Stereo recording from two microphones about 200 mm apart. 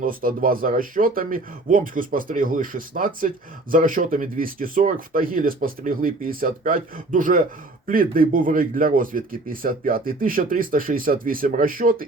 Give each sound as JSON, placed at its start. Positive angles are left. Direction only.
{"t": 0.0, "sound": "speech", "side_deg": -45}